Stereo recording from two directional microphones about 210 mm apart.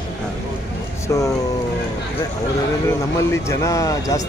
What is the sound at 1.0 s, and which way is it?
Speech, 15° left (ahead or behind).